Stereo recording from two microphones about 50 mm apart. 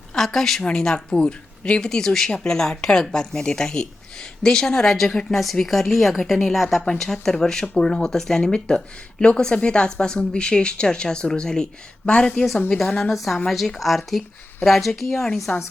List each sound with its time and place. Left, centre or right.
0.1 s speech: centre
13.1 s speech: centre